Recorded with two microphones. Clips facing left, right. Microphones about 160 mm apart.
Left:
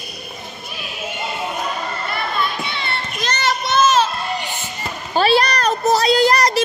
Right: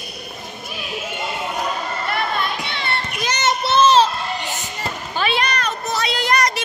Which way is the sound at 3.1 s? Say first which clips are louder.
Even; 10° right (ahead or behind).